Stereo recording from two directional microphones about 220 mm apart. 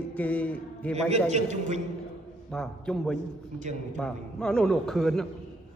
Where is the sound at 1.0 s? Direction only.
30° right (ahead or behind).